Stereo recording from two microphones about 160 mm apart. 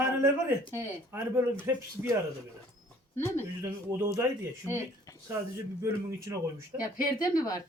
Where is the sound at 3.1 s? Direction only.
15° left (ahead or behind).